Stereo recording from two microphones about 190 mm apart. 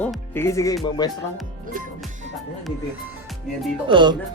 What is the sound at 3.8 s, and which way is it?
Speech, 25° right (ahead or behind).